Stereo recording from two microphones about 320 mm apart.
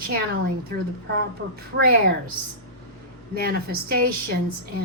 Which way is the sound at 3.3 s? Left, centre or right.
Right.